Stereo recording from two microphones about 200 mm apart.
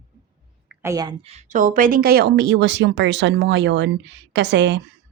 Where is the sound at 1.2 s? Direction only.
35° right (ahead or behind).